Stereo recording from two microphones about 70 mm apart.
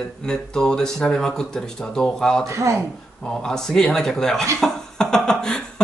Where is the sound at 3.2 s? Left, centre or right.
Centre.